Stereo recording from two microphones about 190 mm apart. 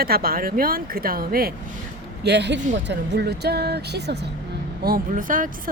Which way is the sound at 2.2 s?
65° right (ahead or behind).